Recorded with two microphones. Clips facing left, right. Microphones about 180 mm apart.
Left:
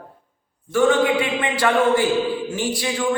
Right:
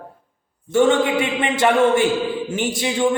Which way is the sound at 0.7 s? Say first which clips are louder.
Right 1 dB; 25° right (ahead or behind).